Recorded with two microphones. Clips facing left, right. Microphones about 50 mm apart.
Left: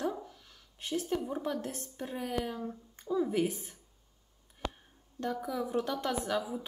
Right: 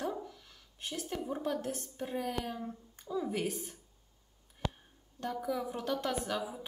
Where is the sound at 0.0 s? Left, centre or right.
Centre.